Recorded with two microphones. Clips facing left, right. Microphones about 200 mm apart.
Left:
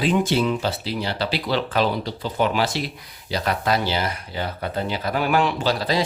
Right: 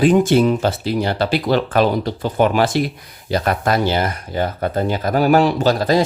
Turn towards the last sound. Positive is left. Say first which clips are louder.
# right 7 dB
turn(degrees=-50)  # may be behind; listen again after turning